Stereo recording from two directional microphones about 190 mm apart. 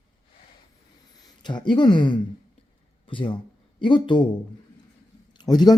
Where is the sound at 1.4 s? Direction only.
25° left (ahead or behind).